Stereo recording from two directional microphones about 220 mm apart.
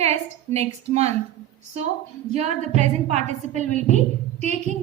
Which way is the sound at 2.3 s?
30° right (ahead or behind).